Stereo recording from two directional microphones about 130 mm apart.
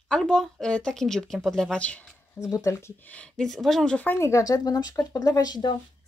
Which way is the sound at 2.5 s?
25° left (ahead or behind).